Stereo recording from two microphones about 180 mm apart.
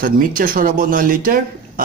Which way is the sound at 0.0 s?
50° right (ahead or behind).